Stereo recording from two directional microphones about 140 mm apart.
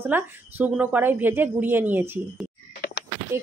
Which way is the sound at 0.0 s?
15° right (ahead or behind).